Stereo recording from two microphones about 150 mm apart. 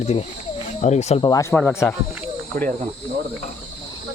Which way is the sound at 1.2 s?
20° left (ahead or behind).